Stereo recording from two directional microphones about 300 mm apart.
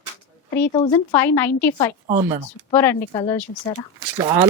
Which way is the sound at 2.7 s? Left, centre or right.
Centre.